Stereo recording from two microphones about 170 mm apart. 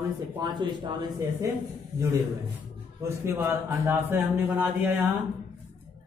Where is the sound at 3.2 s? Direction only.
15° right (ahead or behind).